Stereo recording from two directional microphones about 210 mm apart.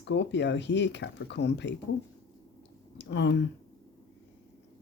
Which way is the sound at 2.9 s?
55° left (ahead or behind).